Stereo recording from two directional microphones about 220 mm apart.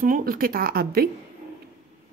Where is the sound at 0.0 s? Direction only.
40° right (ahead or behind).